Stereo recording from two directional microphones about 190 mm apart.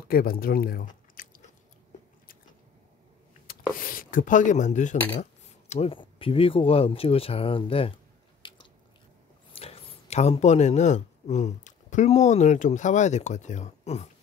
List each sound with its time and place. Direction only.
0.1 s speech: 50° left (ahead or behind)
3.7 s speech: 50° left (ahead or behind); by 7.9 s 30° left (ahead or behind)
8.4 s biting: 25° left (ahead or behind)
9.5 s speech: 30° left (ahead or behind)